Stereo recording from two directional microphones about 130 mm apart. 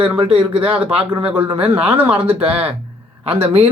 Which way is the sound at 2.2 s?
50° right (ahead or behind).